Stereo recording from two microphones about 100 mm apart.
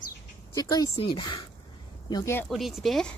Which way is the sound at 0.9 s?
60° left (ahead or behind).